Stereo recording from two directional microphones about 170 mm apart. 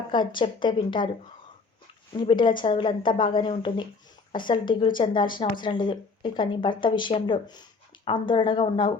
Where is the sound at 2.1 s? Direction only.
30° left (ahead or behind).